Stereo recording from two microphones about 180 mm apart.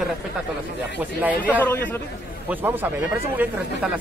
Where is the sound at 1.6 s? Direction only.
10° left (ahead or behind).